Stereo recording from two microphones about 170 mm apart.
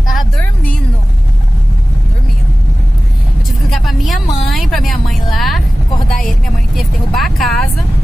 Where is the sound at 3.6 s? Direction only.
Centre (ahead or behind).